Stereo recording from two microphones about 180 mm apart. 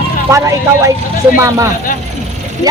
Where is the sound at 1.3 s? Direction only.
15° right (ahead or behind).